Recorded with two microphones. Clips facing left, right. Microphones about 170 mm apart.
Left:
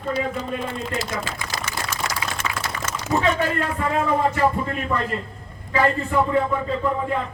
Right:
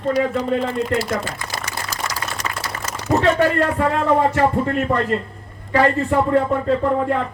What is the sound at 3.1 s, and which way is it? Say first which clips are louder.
Speech: right 5 dB; 65° right (ahead or behind).